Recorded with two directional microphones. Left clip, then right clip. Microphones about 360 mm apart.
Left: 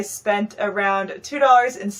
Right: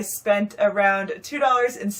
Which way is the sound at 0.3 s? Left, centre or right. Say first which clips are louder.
Right 2 dB; centre.